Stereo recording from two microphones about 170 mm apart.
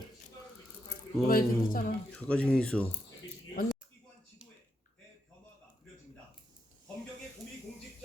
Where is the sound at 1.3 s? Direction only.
55° left (ahead or behind).